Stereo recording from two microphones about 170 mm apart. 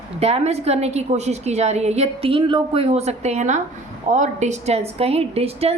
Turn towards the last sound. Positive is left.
turn(degrees=-35)  # may be behind; listen again after turning